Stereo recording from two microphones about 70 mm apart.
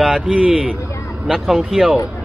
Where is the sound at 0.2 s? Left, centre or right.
Centre.